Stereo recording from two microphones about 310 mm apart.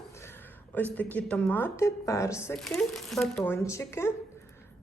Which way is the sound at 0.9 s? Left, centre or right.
Centre.